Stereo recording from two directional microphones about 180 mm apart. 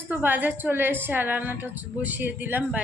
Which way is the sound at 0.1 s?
10° right (ahead or behind).